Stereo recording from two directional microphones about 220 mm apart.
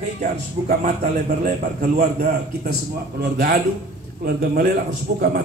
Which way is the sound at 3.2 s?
40° right (ahead or behind).